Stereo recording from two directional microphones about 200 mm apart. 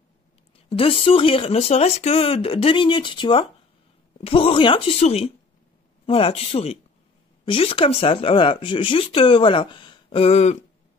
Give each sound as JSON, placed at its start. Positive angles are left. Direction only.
{"t": 0.7, "sound": "speech", "side_deg": 25}